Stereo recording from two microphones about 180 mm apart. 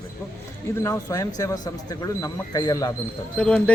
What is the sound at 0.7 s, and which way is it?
Speech, 15° left (ahead or behind).